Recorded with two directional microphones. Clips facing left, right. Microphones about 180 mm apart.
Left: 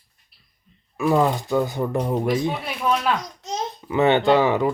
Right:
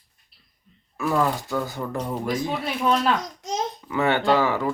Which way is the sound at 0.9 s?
20° left (ahead or behind).